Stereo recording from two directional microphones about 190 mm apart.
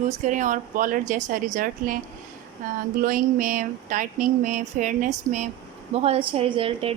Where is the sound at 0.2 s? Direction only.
40° right (ahead or behind).